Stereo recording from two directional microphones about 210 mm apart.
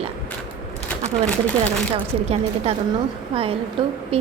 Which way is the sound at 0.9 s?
5° left (ahead or behind).